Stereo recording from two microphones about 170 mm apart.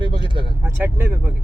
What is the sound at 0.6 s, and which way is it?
Speech, 15° right (ahead or behind).